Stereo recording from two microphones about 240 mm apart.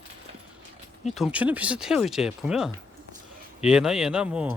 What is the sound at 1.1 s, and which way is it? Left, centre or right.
Speech, centre.